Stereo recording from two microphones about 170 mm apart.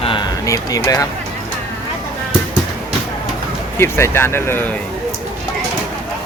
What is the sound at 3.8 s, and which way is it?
Speech, 15° left (ahead or behind).